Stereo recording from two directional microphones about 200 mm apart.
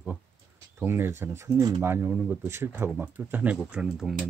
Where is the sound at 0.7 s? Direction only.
10° right (ahead or behind).